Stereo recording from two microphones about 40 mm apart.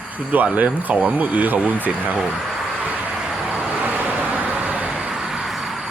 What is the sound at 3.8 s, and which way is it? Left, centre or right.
Vehicle, right.